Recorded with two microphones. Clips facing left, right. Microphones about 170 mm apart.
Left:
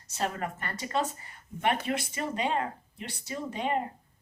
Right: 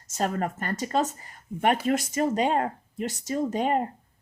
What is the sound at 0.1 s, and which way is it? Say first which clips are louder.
Speech: right 5 dB; 40° right (ahead or behind).